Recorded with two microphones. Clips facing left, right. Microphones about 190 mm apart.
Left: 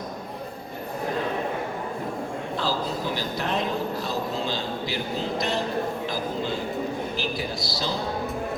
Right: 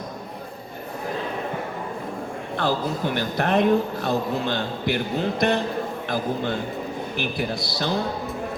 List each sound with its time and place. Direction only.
2.6 s a man's voice: 60° right (ahead or behind)